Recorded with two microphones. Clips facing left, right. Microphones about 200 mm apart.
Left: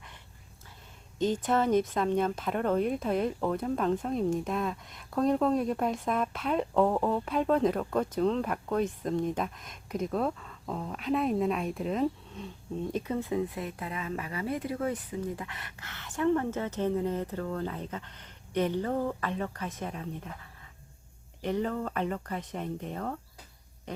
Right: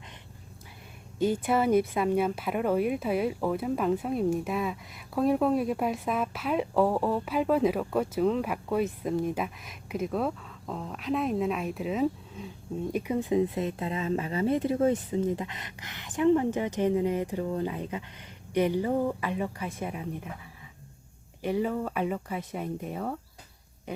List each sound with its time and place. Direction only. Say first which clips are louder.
1.2 s speech: right 2 dB; 10° right (ahead or behind)